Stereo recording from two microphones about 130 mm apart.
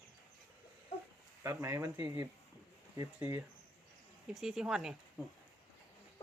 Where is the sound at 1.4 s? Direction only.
20° right (ahead or behind).